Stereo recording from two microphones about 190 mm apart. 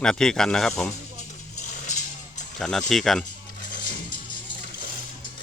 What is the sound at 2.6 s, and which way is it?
Speech, 5° left (ahead or behind).